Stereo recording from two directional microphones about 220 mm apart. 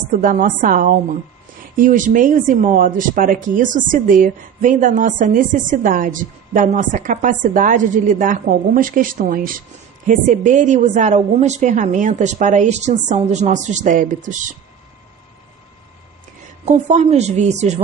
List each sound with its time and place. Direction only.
0.2 s speech: 40° right (ahead or behind)
16.6 s speech: 30° right (ahead or behind)